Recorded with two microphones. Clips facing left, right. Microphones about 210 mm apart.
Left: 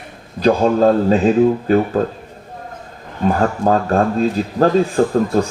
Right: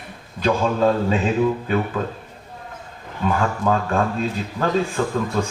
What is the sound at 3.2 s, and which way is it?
A man's voice, 40° left (ahead or behind).